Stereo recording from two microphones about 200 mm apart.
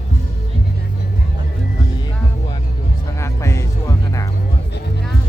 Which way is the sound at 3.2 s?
15° left (ahead or behind).